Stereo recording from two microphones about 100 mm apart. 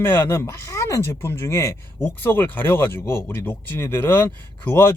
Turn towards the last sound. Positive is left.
turn(degrees=20)  # may be behind; listen again after turning